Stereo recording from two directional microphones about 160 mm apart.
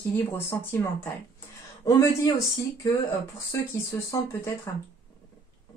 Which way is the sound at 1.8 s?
20° left (ahead or behind).